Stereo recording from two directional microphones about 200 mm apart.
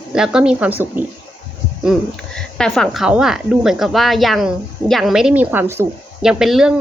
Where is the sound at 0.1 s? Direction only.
5° right (ahead or behind).